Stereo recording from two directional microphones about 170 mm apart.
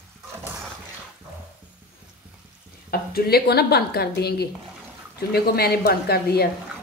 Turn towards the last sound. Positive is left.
turn(degrees=65)  # may be behind; listen again after turning